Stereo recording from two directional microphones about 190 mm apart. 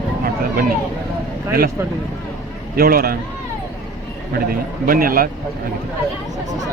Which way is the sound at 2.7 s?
50° right (ahead or behind).